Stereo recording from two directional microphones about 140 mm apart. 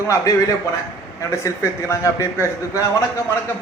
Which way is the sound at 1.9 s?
20° left (ahead or behind).